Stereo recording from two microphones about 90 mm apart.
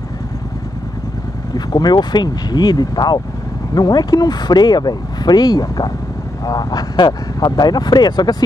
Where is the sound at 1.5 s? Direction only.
50° left (ahead or behind).